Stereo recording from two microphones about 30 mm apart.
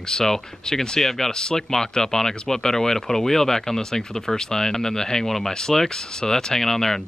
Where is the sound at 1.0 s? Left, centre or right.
Centre.